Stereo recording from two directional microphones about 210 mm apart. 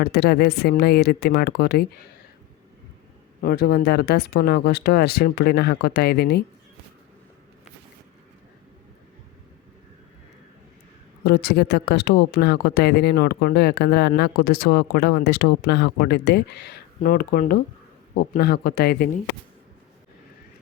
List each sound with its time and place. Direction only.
0.0 s speech: 50° left (ahead or behind)
3.4 s speech: 50° left (ahead or behind)
11.2 s speech: 50° left (ahead or behind)